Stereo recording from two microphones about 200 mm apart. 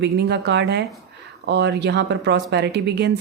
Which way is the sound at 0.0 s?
60° right (ahead or behind).